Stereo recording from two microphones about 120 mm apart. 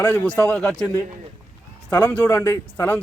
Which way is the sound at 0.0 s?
10° left (ahead or behind).